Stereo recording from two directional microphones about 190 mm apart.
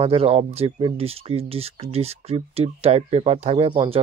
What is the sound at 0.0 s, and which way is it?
Speech, 30° right (ahead or behind).